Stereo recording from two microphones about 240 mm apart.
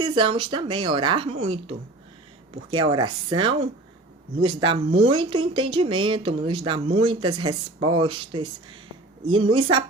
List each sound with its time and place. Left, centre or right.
0.0 s speech: centre